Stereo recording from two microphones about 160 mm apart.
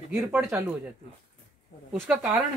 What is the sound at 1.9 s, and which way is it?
Speech, 10° right (ahead or behind).